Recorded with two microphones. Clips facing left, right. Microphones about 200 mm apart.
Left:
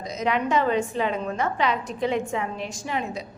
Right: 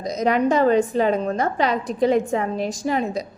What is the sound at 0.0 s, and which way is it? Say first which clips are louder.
A woman's voice: right 6 dB; 40° right (ahead or behind).